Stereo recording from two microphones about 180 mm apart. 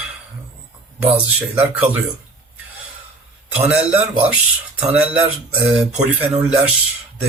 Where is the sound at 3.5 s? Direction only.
10° right (ahead or behind).